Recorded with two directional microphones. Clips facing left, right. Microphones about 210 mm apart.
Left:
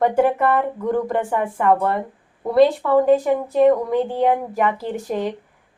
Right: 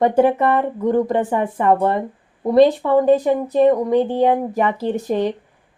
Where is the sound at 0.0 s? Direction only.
20° right (ahead or behind).